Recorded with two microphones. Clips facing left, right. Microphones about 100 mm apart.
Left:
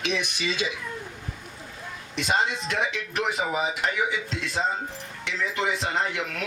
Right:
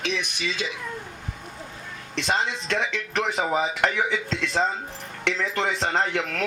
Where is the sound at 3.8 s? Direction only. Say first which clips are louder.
Right 3 dB; 90° right.